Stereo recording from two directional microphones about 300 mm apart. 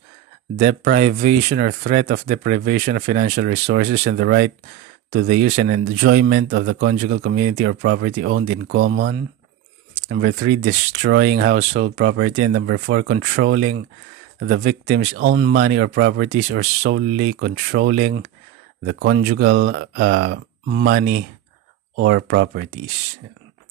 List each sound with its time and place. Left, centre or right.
0.6 s speech: right